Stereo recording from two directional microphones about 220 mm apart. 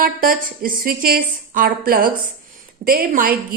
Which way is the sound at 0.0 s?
40° right (ahead or behind).